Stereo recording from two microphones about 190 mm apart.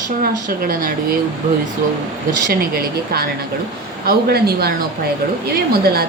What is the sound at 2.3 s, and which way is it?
A woman's voice, 50° right (ahead or behind).